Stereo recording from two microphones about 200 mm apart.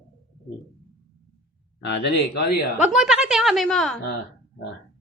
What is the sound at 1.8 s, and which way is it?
Speech, 55° left (ahead or behind).